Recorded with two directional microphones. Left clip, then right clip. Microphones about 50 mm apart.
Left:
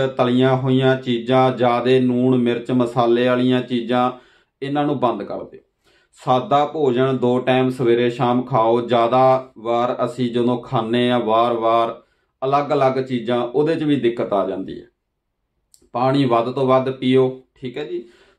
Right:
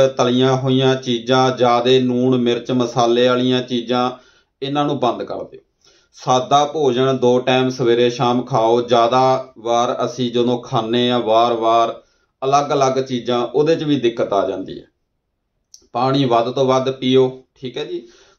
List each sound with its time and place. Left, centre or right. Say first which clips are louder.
0.0 s speech: right 3 dB; left
6.1 s speech: right 2 dB; left
10.3 s a man's voice: right 4 dB; left
15.9 s speech: right 1 dB; left